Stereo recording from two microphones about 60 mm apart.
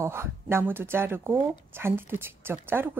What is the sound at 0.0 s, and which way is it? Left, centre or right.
Speech, right.